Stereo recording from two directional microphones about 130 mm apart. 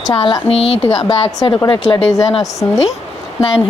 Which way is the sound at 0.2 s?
45° left (ahead or behind).